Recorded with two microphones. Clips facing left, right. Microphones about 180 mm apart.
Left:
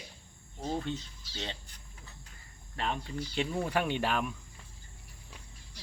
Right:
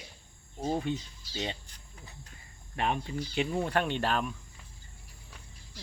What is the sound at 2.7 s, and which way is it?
Speech, 15° right (ahead or behind).